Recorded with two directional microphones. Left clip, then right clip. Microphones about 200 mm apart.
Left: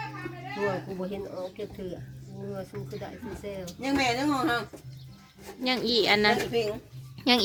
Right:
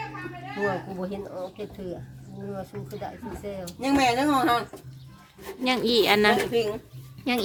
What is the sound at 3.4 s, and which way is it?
A woman's voice, 20° right (ahead or behind).